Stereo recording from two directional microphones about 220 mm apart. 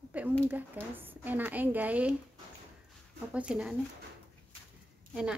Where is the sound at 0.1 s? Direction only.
5° right (ahead or behind).